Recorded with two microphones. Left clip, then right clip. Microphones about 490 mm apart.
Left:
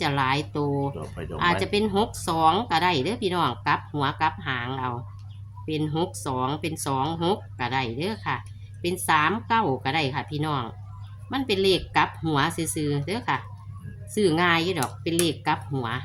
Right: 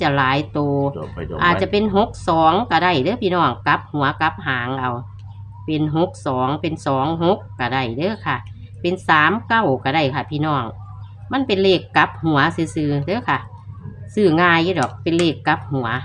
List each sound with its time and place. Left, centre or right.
0.0 s speech: left